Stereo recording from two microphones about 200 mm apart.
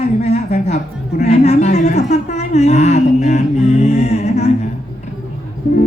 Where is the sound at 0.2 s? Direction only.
30° left (ahead or behind).